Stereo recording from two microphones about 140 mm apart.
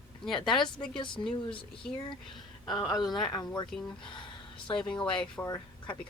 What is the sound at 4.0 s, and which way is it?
Speech, 35° left (ahead or behind).